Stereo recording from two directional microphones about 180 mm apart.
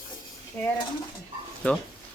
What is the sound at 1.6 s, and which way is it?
Speech, 5° left (ahead or behind).